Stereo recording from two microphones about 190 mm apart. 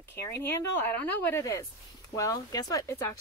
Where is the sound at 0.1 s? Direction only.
10° left (ahead or behind).